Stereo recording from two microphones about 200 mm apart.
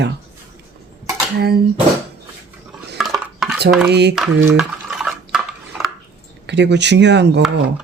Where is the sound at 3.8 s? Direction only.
55° right (ahead or behind).